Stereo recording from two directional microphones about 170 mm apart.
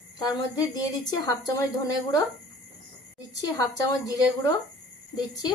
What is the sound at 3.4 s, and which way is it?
Speech, 20° left (ahead or behind).